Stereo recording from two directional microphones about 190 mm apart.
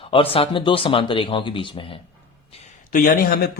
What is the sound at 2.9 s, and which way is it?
Speech, 45° left (ahead or behind).